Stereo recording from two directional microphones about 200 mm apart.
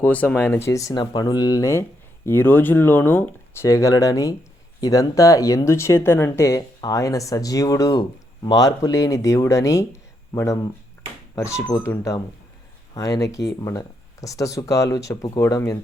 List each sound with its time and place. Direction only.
0.0 s speech: 10° left (ahead or behind)